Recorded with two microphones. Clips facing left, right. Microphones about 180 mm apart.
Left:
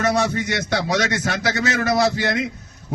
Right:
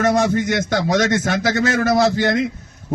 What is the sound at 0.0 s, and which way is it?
A man's voice, 50° right (ahead or behind).